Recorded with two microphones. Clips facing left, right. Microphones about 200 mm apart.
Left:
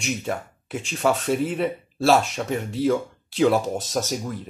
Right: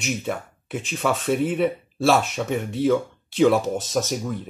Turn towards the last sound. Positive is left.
turn(degrees=0)  # may be behind; listen again after turning